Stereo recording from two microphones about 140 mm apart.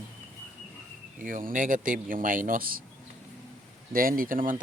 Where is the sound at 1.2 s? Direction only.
75° right (ahead or behind).